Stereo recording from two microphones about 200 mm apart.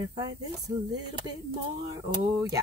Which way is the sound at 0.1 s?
20° right (ahead or behind).